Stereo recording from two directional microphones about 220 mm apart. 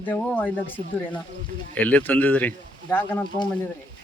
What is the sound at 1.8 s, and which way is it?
Speech, 5° left (ahead or behind).